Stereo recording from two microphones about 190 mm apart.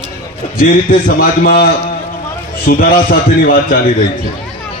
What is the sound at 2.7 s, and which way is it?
A man's voice, 50° left (ahead or behind).